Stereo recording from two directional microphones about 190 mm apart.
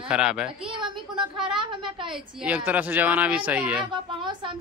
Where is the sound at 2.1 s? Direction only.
5° right (ahead or behind).